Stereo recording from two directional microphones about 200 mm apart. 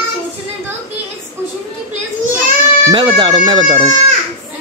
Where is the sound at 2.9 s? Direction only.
25° right (ahead or behind).